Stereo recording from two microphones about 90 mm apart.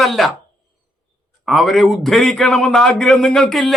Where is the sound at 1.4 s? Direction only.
Centre (ahead or behind).